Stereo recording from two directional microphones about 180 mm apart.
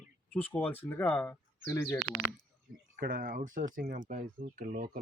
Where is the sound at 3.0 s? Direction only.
55° right (ahead or behind).